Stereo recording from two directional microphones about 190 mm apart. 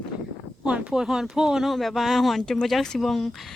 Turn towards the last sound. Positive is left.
turn(degrees=0)  # may be behind; listen again after turning